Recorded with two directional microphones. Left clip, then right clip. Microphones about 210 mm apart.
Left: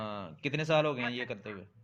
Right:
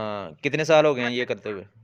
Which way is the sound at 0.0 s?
60° right (ahead or behind).